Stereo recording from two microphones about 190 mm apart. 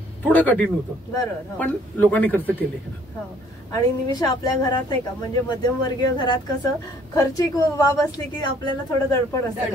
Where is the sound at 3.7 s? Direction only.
20° left (ahead or behind).